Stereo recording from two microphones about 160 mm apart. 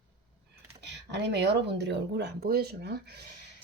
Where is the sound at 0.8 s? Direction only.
90° right.